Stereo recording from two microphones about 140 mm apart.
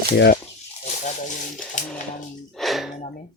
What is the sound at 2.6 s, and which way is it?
Gasp, centre (ahead or behind).